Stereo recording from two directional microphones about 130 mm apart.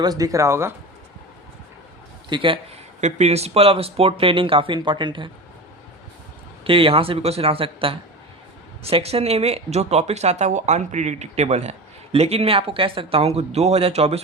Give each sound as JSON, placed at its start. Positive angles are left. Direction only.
{"t": 0.0, "sound": "speech", "side_deg": -30}
{"t": 2.3, "sound": "a man's voice", "side_deg": -40}
{"t": 3.0, "sound": "speech", "side_deg": -55}
{"t": 6.7, "sound": "speech", "side_deg": -45}